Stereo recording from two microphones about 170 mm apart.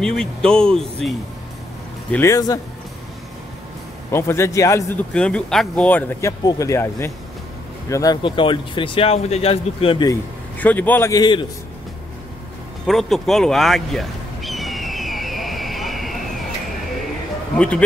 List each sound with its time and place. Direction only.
0.0 s speech: 5° left (ahead or behind)
2.0 s speech: 15° left (ahead or behind)
4.1 s speech: 15° left (ahead or behind); by 10.0 s 35° left (ahead or behind)
10.6 s speech: 10° left (ahead or behind)
12.8 s a sound: centre (ahead or behind)
17.6 s speech: 5° left (ahead or behind)